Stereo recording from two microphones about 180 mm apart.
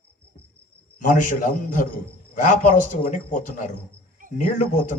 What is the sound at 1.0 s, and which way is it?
A man's voice, 45° left (ahead or behind).